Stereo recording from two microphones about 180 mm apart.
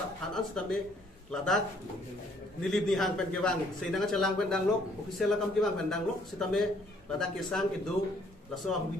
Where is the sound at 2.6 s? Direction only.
Centre (ahead or behind).